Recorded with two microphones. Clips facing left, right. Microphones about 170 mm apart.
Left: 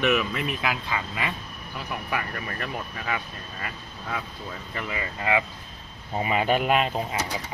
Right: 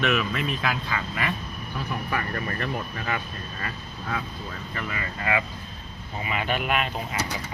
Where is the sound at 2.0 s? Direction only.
10° left (ahead or behind).